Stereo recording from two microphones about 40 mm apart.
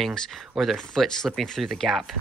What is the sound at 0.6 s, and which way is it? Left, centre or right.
Speech, centre.